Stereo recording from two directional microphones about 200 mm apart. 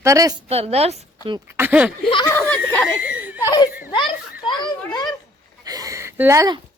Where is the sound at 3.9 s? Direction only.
25° left (ahead or behind).